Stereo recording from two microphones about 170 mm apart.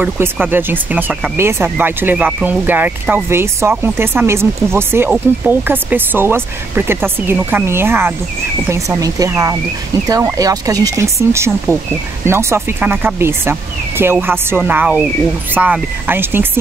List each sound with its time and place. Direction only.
0.0 s speech: 10° right (ahead or behind)